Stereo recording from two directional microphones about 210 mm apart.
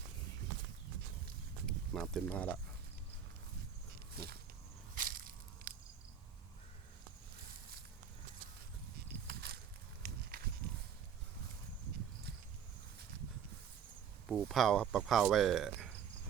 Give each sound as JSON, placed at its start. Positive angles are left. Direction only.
{"t": 1.6, "sound": "speech", "side_deg": 5}
{"t": 4.1, "sound": "walk", "side_deg": -45}
{"t": 4.9, "sound": "crushing", "side_deg": -45}
{"t": 9.2, "sound": "a sound", "side_deg": -50}
{"t": 14.3, "sound": "speech", "side_deg": 0}